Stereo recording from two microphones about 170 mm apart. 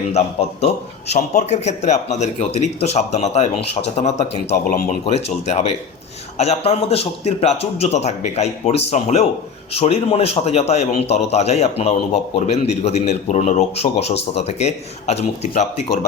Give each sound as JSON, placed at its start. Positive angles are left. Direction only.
{"t": 0.1, "sound": "a man's voice", "side_deg": 40}
{"t": 4.7, "sound": "speech", "side_deg": 60}
{"t": 5.0, "sound": "a man's voice", "side_deg": 40}